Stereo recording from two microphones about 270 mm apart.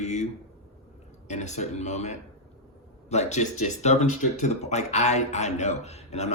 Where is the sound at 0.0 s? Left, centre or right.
Left.